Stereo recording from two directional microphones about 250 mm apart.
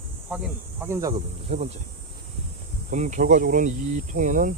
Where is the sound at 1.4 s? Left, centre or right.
Right.